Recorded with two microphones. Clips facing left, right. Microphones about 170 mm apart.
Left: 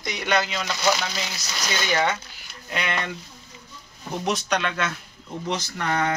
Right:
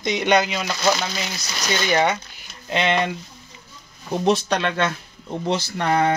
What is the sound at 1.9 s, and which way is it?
A man's voice, 15° right (ahead or behind).